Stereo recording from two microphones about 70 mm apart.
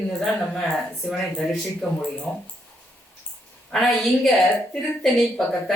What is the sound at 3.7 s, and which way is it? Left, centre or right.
Speech, centre.